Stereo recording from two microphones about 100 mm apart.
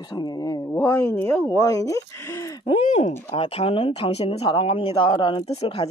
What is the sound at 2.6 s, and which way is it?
Speech, 80° left.